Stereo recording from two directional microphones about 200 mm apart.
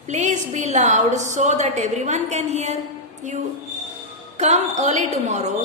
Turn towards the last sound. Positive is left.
turn(degrees=-35)  # may be behind; listen again after turning